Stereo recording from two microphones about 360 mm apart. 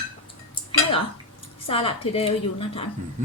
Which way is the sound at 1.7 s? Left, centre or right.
Centre.